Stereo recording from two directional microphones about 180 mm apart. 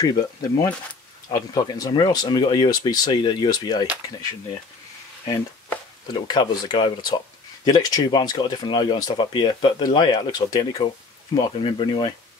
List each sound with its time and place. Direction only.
0.0 s speech: 20° left (ahead or behind)
6.1 s speech: 25° left (ahead or behind)